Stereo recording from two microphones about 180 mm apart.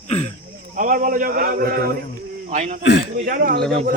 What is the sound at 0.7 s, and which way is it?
Speech, 50° right (ahead or behind).